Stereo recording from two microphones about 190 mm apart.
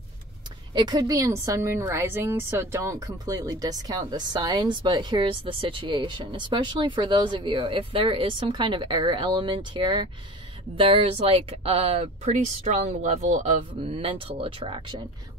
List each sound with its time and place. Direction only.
0.7 s a woman's voice: 20° right (ahead or behind)